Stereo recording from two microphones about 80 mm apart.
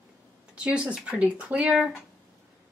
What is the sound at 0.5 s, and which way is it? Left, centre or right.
Speech, centre.